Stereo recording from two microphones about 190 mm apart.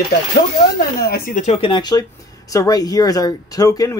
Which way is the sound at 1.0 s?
50° left (ahead or behind).